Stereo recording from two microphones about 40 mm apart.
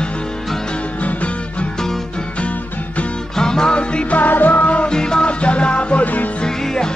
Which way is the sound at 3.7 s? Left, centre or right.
Left.